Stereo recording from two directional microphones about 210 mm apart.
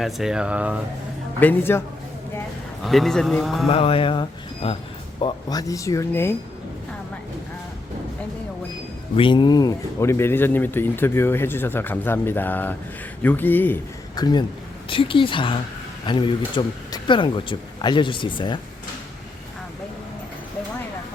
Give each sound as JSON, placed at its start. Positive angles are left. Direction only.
{"t": 0.0, "sound": "a man's voice", "side_deg": 0}
{"t": 1.4, "sound": "speech", "side_deg": 10}
{"t": 2.8, "sound": "a man's voice", "side_deg": 0}
{"t": 3.7, "sound": "speech", "side_deg": 25}
{"t": 9.1, "sound": "speech", "side_deg": 20}
{"t": 14.2, "sound": "speech", "side_deg": 20}